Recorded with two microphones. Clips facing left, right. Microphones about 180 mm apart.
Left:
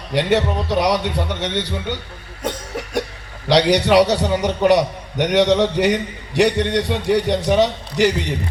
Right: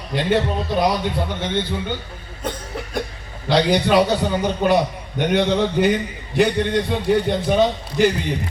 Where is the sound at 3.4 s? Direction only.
75° left (ahead or behind).